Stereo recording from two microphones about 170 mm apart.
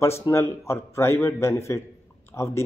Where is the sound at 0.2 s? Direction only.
15° left (ahead or behind).